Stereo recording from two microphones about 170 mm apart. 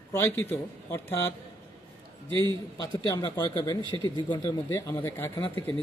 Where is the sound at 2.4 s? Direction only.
20° left (ahead or behind).